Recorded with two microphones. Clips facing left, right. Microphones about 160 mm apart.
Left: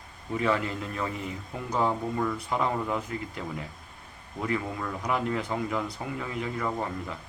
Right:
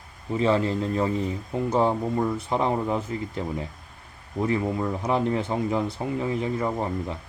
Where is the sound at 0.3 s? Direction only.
25° right (ahead or behind).